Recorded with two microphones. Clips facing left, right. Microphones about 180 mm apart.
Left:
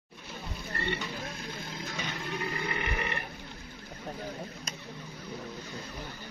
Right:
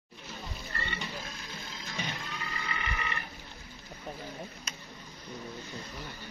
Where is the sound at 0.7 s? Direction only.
60° left (ahead or behind).